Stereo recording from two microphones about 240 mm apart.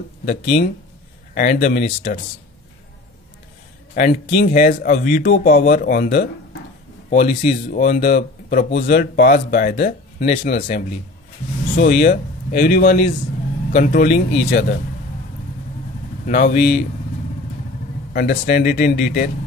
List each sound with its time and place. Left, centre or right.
0.2 s speech: left
3.9 s speech: left
16.3 s speech: left
18.1 s speech: left